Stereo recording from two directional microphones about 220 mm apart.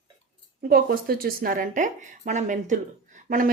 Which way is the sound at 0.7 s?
45° right (ahead or behind).